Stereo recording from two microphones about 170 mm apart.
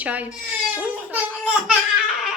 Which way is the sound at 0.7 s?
10° right (ahead or behind).